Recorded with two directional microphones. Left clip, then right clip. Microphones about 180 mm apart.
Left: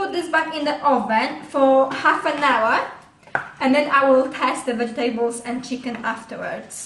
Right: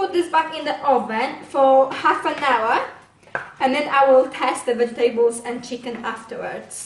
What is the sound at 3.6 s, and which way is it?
A woman's voice, 20° right (ahead or behind).